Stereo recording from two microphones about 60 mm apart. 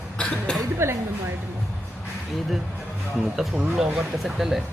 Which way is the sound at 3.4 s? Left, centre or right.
Centre.